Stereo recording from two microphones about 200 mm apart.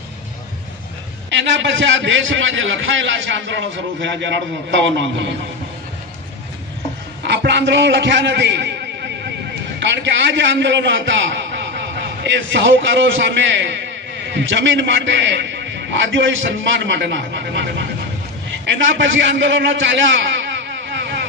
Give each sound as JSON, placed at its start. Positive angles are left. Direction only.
{"t": 1.3, "sound": "a man's voice", "side_deg": -65}
{"t": 7.2, "sound": "a man's voice", "side_deg": -60}
{"t": 9.8, "sound": "a man's voice", "side_deg": -65}